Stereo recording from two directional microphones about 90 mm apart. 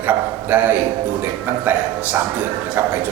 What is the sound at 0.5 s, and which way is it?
Speech, 20° right (ahead or behind).